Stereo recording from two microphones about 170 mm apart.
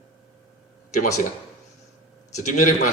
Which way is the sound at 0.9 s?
45° left (ahead or behind).